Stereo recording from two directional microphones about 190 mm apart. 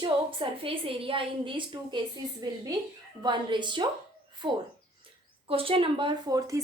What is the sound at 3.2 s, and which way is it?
A woman's voice, 25° right (ahead or behind).